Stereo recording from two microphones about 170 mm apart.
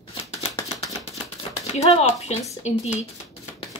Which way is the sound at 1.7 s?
40° left (ahead or behind).